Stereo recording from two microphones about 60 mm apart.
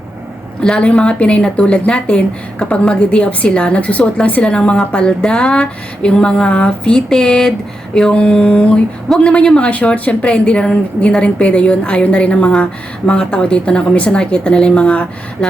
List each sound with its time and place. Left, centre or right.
0.6 s a woman's voice: centre